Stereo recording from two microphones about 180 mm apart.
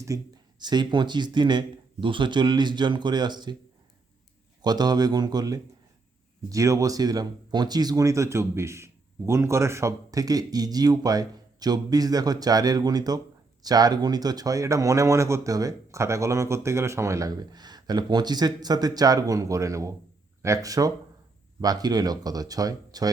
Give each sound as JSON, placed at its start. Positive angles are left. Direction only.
{"t": 0.1, "sound": "speech", "side_deg": -20}
{"t": 4.6, "sound": "speech", "side_deg": -20}